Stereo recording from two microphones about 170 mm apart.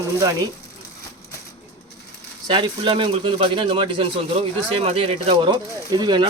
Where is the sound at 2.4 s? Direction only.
30° right (ahead or behind).